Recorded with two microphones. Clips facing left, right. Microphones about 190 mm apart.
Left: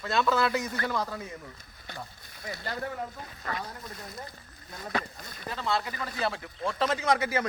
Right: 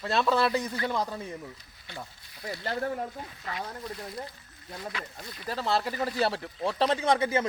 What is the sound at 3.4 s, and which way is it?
Speech, 45° left (ahead or behind).